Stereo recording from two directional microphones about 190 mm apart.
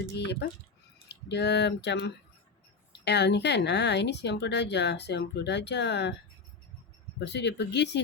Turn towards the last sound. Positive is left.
turn(degrees=65)  # may be behind; listen again after turning